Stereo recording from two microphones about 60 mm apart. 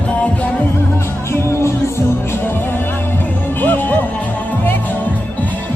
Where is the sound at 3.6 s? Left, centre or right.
Left.